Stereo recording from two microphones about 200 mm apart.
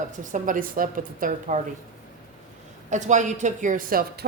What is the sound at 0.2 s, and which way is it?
A woman's voice, 40° right (ahead or behind).